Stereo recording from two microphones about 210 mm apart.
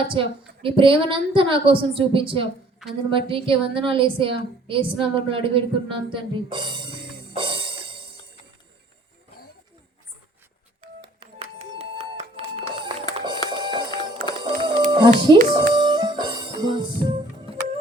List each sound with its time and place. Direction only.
0.1 s a woman's voice: 25° right (ahead or behind)
11.0 s music: 25° right (ahead or behind)